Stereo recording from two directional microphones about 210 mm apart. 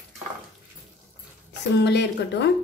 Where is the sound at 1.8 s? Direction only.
55° left (ahead or behind).